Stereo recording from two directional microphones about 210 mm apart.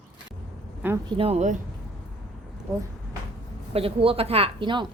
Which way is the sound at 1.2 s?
30° right (ahead or behind).